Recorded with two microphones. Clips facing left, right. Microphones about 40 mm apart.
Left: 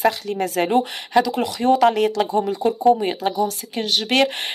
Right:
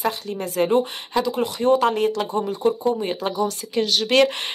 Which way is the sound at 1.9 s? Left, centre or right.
Left.